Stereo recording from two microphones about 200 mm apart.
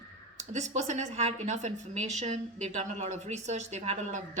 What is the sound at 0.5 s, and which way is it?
A woman's voice, 35° right (ahead or behind).